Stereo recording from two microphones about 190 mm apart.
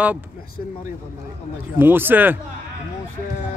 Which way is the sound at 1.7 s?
10° right (ahead or behind).